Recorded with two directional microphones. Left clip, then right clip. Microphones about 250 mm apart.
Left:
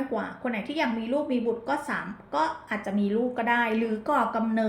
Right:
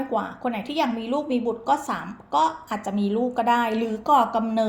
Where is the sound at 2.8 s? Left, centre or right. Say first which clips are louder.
Right 3 dB; right.